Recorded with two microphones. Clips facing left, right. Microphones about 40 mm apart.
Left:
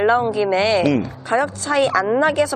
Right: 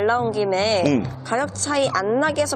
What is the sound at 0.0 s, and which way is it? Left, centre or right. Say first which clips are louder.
A woman's voice: left 3 dB; left.